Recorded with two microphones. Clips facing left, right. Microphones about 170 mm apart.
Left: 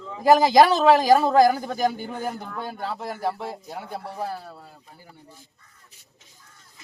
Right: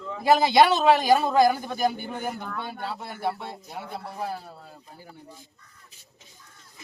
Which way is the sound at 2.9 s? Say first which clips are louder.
Left 2 dB; 90° left.